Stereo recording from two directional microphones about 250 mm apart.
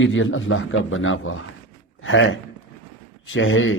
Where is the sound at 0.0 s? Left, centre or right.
Left.